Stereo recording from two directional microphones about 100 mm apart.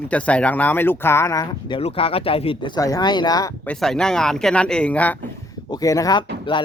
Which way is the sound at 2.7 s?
40° left (ahead or behind).